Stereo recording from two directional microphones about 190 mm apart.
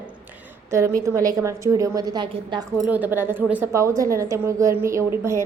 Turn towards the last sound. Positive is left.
turn(degrees=-15)  # may be behind; listen again after turning